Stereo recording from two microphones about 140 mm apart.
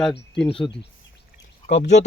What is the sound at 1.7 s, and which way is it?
Speech, 55° left (ahead or behind).